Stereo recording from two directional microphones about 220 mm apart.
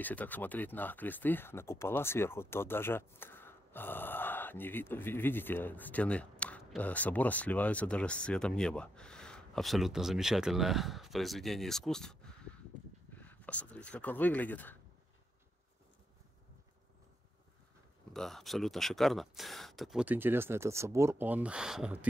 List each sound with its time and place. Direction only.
0.0 s speech: 5° left (ahead or behind)
18.1 s speech: centre (ahead or behind)